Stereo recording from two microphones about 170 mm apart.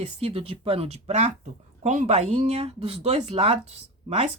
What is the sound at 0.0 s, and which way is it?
Speech, 35° right (ahead or behind).